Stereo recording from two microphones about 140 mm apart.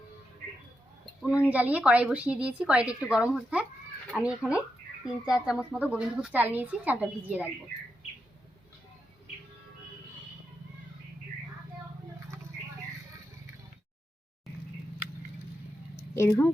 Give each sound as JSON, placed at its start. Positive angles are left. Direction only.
{"t": 1.5, "sound": "a woman's voice", "side_deg": -10}
{"t": 16.1, "sound": "speech", "side_deg": 20}